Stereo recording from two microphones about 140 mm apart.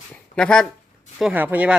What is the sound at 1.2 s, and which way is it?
Speech, 10° right (ahead or behind).